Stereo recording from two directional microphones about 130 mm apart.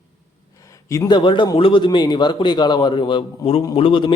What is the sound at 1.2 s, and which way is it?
A man's voice, 40° left (ahead or behind).